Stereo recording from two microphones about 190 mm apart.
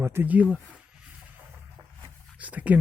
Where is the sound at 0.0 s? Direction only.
10° right (ahead or behind).